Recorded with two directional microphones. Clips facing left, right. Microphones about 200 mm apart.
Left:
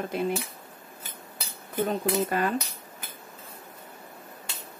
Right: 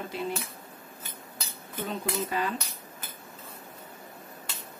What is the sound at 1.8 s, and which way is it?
Speech, 50° left (ahead or behind).